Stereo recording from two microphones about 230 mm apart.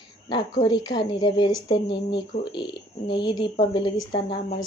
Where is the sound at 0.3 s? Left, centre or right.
Centre.